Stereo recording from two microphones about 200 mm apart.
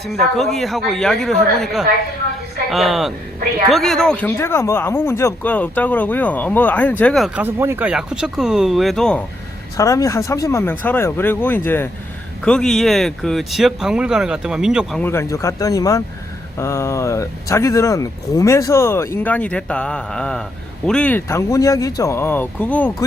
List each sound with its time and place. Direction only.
0.0 s speech: centre (ahead or behind)
7.4 s speech: 10° right (ahead or behind); by 9.2 s 5° left (ahead or behind)
9.7 s speech: 15° left (ahead or behind); by 15.0 s 5° right (ahead or behind)
15.0 s speech: 10° left (ahead or behind)